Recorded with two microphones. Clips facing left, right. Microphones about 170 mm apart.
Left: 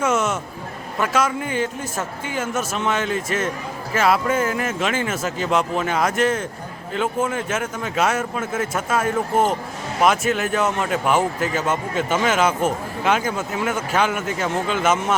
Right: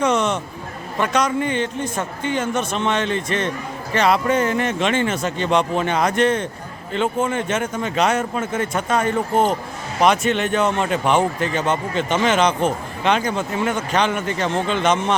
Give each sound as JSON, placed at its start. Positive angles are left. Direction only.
{"t": 0.0, "sound": "music", "side_deg": 5}
{"t": 0.9, "sound": "speech", "side_deg": 5}